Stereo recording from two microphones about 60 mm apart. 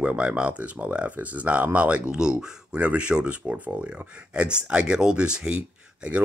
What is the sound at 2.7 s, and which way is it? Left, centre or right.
Speech, right.